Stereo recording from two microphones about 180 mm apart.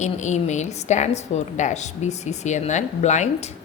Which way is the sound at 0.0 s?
40° left (ahead or behind).